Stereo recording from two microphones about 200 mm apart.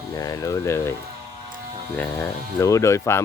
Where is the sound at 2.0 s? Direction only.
10° left (ahead or behind).